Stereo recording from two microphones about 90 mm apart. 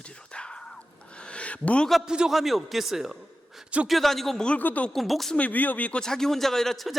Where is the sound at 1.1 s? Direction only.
10° left (ahead or behind).